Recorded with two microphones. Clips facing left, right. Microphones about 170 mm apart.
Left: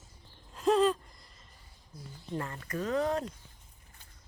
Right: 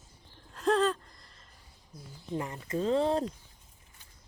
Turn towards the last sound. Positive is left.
turn(degrees=-30)  # may be behind; listen again after turning